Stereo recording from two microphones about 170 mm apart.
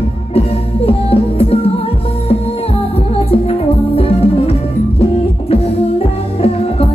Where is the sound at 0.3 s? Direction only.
35° left (ahead or behind).